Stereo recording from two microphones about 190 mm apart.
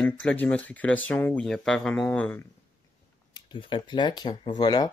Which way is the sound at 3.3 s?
25° left (ahead or behind).